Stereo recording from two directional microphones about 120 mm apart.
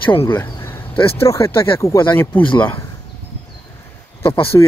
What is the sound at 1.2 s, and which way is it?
Speech, 25° left (ahead or behind).